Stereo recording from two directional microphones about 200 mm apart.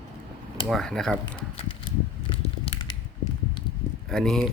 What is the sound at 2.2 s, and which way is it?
Crushing, 25° left (ahead or behind).